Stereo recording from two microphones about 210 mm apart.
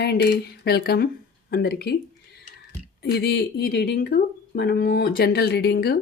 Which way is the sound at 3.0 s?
50° left (ahead or behind).